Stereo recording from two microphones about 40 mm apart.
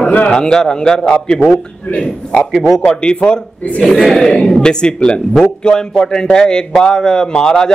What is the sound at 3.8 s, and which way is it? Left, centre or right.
Speech, centre.